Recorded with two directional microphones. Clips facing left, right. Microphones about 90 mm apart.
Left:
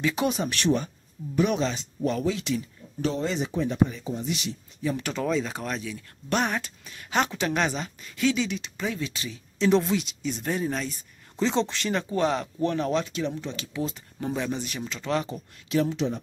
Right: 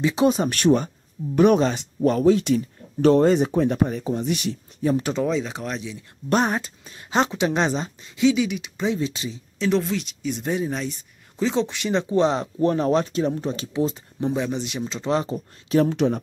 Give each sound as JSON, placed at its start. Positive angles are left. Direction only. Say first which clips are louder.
{"t": 0.0, "sound": "speech", "louder": "right 6 dB", "side_deg": -25}
{"t": 0.3, "sound": "speech", "louder": "right 6 dB", "side_deg": -50}
{"t": 4.9, "sound": "speech", "louder": "right 7 dB", "side_deg": -30}
{"t": 5.2, "sound": "speech", "louder": "right 3 dB", "side_deg": -10}
{"t": 6.2, "sound": "speech", "louder": "right 5 dB", "side_deg": -35}
{"t": 8.1, "sound": "speech", "louder": "right 6 dB", "side_deg": -15}
{"t": 8.7, "sound": "speech", "louder": "right 9 dB", "side_deg": -20}
{"t": 9.6, "sound": "speech", "louder": "even", "side_deg": 5}
{"t": 10.2, "sound": "speech", "louder": "right 3 dB", "side_deg": -10}
{"t": 14.3, "sound": "speech", "louder": "right 1 dB", "side_deg": -15}
{"t": 15.9, "sound": "speech", "louder": "right 6 dB", "side_deg": -55}